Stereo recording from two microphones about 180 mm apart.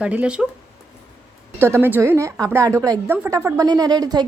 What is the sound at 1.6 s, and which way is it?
A woman's voice, 10° right (ahead or behind).